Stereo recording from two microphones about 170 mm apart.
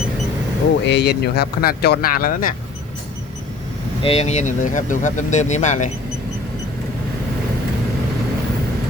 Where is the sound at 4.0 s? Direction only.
35° left (ahead or behind).